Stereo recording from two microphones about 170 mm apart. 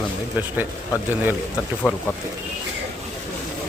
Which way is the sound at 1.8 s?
5° right (ahead or behind).